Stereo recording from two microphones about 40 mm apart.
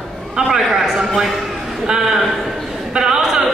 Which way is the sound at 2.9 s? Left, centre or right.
Centre.